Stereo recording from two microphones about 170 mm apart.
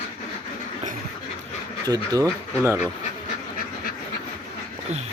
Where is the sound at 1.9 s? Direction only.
20° right (ahead or behind).